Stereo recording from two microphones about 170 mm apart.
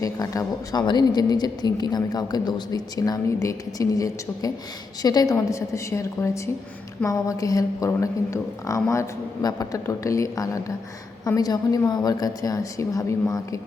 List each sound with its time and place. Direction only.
0.0 s a woman's voice: 20° left (ahead or behind)